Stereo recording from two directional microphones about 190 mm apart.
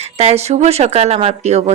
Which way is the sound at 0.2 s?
35° right (ahead or behind).